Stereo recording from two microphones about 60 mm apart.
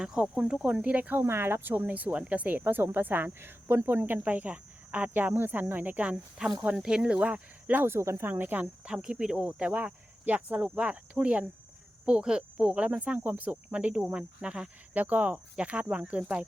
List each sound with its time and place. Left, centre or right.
0.0 s speech: centre
1.3 s speech: right
7.8 s speech: right
8.2 s speech: right
8.8 s speech: centre